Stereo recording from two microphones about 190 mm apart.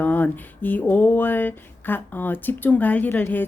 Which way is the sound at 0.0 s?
10° left (ahead or behind).